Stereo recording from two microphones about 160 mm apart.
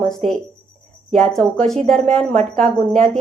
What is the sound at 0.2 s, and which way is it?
Speech, 45° right (ahead or behind).